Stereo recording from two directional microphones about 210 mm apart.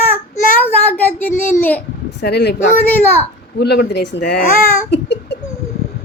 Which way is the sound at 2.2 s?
55° left (ahead or behind).